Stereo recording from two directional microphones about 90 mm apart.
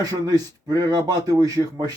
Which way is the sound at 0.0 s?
45° right (ahead or behind).